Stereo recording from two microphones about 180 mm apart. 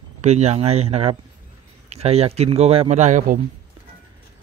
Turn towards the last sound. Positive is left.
turn(degrees=-45)  # may be behind; listen again after turning